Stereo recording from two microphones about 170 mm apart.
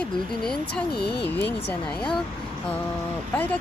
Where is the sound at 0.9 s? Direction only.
70° left (ahead or behind).